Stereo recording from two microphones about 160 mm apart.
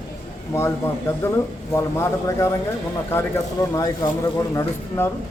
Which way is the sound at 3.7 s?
25° left (ahead or behind).